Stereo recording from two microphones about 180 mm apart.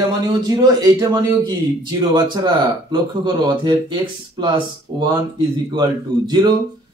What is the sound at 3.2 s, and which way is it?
A man's voice, 25° right (ahead or behind).